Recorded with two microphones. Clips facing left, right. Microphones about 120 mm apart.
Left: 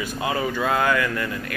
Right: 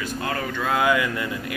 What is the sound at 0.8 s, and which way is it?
Speech, 15° right (ahead or behind).